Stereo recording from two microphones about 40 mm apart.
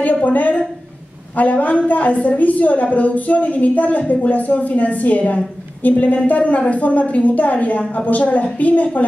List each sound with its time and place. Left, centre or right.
0.0 s a woman's voice: left